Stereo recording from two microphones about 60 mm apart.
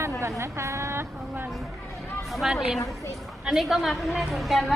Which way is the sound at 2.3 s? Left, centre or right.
Centre.